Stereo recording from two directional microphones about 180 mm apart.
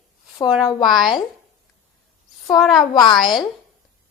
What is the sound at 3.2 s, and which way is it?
Speech, centre (ahead or behind).